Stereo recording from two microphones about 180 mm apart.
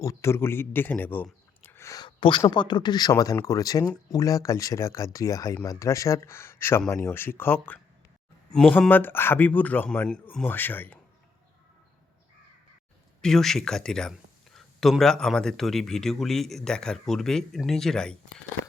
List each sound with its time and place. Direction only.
0.0 s speech: 15° left (ahead or behind)
13.2 s speech: centre (ahead or behind)